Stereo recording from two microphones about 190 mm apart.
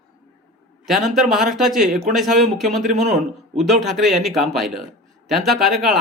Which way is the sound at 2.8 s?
35° right (ahead or behind).